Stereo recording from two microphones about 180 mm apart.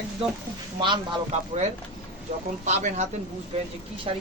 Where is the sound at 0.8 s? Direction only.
25° right (ahead or behind).